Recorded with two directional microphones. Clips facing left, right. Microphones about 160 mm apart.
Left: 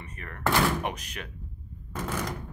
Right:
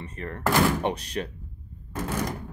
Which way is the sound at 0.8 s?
35° right (ahead or behind).